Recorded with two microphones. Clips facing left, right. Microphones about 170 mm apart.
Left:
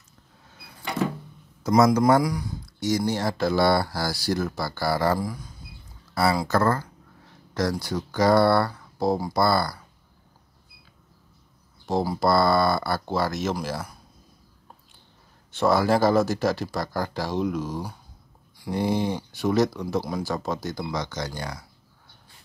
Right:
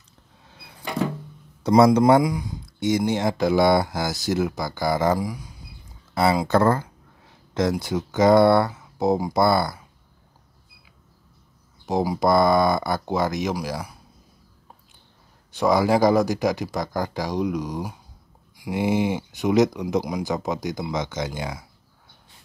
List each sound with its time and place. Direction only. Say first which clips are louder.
1.6 s speech: right 3 dB; 30° right (ahead or behind); by 5.5 s 10° right (ahead or behind)
6.1 s speech: right 3 dB; 25° right (ahead or behind)
6.6 s speech: right 3 dB; 15° right (ahead or behind)
11.9 s speech: right 2 dB; 15° right (ahead or behind)
15.5 s speech: right 2 dB; 15° right (ahead or behind)